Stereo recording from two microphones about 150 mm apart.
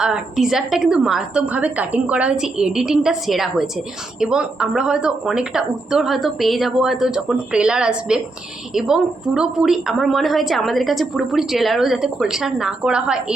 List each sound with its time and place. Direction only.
0.0 s a woman's voice: 5° right (ahead or behind)